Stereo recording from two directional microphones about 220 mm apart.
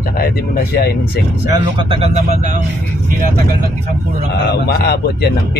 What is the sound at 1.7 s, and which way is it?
Speech, 25° right (ahead or behind).